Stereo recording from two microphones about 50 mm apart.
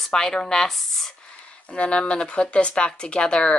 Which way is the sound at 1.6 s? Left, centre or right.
Left.